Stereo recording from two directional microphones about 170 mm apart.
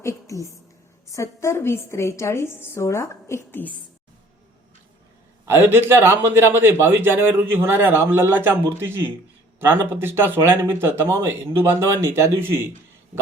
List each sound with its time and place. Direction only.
0.0 s a woman's voice: 20° left (ahead or behind)
5.5 s speech: 15° right (ahead or behind)